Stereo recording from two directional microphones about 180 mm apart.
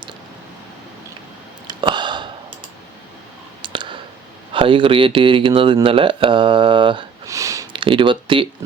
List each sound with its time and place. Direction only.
1.6 s a sound: 25° right (ahead or behind)
3.6 s clicking: 25° right (ahead or behind)
4.5 s speech: 30° right (ahead or behind)